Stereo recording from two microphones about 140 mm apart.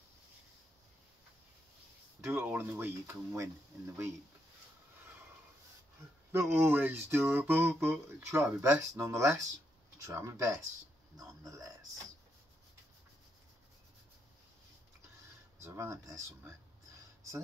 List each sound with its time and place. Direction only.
2.2 s speech: 15° right (ahead or behind)
6.3 s speech: 20° right (ahead or behind)
11.1 s a sound: 25° right (ahead or behind)
15.6 s speech: 20° right (ahead or behind)